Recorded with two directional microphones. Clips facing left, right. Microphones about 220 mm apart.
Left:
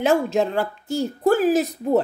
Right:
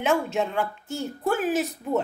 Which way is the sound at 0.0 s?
35° left (ahead or behind).